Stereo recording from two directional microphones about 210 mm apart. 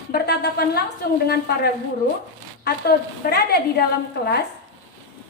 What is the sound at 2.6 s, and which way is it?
Speech, 50° left (ahead or behind).